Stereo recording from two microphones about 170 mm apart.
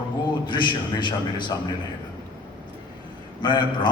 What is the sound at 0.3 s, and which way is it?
A man's voice, 25° left (ahead or behind).